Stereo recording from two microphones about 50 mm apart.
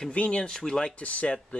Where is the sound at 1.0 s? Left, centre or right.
Left.